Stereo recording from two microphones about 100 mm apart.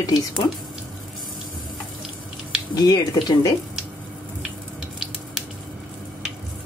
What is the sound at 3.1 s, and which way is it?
Speech, 40° left (ahead or behind).